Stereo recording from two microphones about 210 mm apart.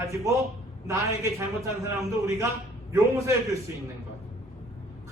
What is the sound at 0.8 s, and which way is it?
A man's voice, 15° right (ahead or behind).